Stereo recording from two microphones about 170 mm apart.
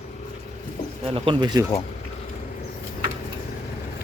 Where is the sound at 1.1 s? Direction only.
30° right (ahead or behind).